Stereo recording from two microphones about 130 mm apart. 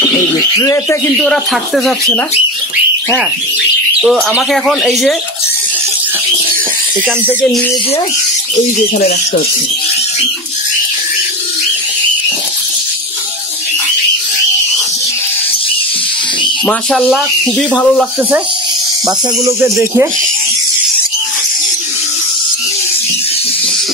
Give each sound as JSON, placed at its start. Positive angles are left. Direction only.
{"t": 0.6, "sound": "speech", "side_deg": 25}
{"t": 1.1, "sound": "speech", "side_deg": 5}
{"t": 4.0, "sound": "speech", "side_deg": 0}
{"t": 16.9, "sound": "speech", "side_deg": 5}
{"t": 19.0, "sound": "speech", "side_deg": -20}